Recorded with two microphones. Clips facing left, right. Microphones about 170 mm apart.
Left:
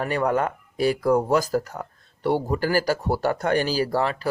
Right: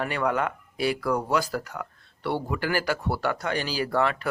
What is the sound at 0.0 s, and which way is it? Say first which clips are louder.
Speech: left 3 dB; 40° left (ahead or behind).